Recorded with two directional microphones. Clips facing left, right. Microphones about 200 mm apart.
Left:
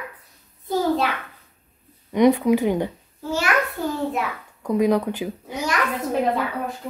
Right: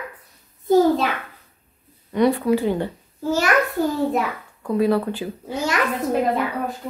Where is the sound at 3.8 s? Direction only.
40° right (ahead or behind).